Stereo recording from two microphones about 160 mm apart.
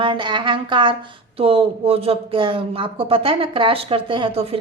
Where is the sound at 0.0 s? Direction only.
30° right (ahead or behind).